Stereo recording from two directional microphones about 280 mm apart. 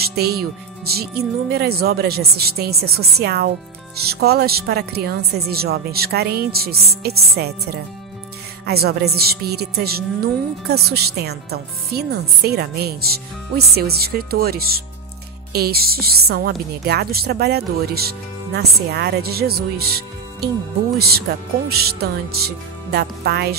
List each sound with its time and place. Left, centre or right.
0.0 s a woman's voice: right